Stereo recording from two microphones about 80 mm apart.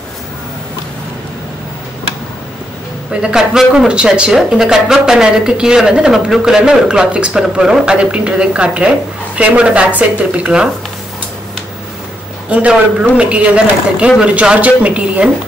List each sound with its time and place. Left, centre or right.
3.1 s speech: centre
12.4 s speech: centre